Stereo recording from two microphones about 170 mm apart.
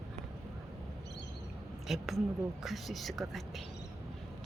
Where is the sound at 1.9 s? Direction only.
Centre (ahead or behind).